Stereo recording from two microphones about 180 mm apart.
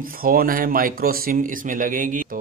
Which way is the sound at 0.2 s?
55° right (ahead or behind).